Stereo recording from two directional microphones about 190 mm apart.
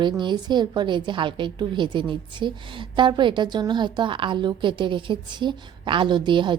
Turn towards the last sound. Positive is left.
turn(degrees=-25)  # may be behind; listen again after turning